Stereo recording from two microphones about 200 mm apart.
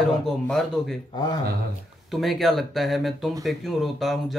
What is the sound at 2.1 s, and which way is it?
Speech, centre (ahead or behind).